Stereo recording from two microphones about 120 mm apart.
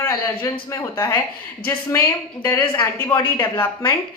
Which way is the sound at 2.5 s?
40° left (ahead or behind).